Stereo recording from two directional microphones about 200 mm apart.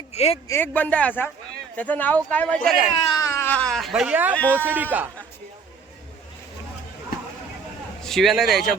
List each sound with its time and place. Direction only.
0.1 s speech: 30° left (ahead or behind)
0.4 s a man's voice: 10° left (ahead or behind)
3.1 s speech: 15° left (ahead or behind); by 5.0 s 10° right (ahead or behind)
8.0 s a man's voice: centre (ahead or behind)